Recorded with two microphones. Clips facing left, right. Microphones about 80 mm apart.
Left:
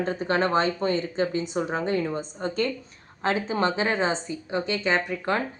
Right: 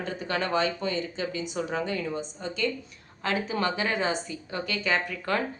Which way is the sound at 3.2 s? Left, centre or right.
Left.